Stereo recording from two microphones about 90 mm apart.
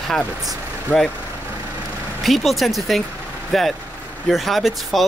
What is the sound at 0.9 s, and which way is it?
Speech, 20° left (ahead or behind).